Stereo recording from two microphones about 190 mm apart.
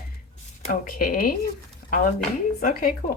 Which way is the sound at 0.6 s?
50° left (ahead or behind).